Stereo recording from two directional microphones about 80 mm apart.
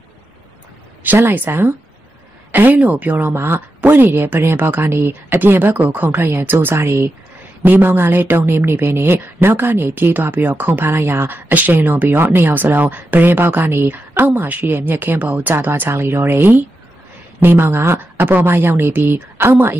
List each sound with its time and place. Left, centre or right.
1.0 s speech: right